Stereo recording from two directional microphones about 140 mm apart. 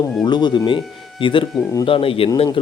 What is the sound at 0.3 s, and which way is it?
Speech, 30° left (ahead or behind).